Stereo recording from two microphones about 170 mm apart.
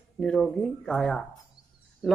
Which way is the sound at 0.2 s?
5° left (ahead or behind).